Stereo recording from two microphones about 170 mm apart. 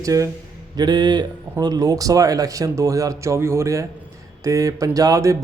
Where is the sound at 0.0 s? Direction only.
20° right (ahead or behind).